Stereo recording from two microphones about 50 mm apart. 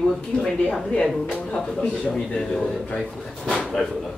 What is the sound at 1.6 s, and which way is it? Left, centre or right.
A man's voice, centre.